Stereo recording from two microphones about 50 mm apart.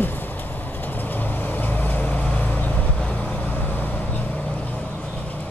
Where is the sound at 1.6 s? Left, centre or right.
Left.